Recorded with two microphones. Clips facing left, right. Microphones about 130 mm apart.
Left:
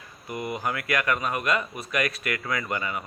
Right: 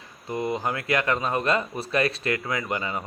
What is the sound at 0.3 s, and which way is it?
Speech, 25° right (ahead or behind).